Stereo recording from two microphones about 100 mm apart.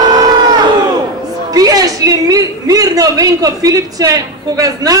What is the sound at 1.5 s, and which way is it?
A man's voice, 35° right (ahead or behind).